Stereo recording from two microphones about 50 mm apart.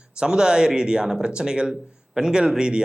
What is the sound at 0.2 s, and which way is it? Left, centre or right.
Speech, centre.